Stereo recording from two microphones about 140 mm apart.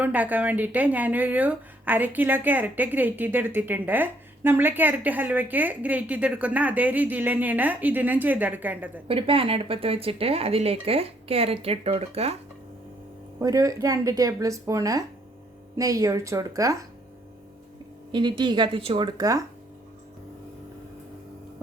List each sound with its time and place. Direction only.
0.0 s speech: 10° right (ahead or behind)
9.0 s speech: 40° right (ahead or behind)
13.4 s speech: 25° right (ahead or behind)
18.1 s speech: 35° right (ahead or behind)